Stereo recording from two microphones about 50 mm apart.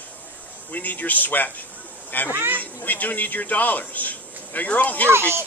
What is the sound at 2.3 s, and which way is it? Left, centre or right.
Speech, right.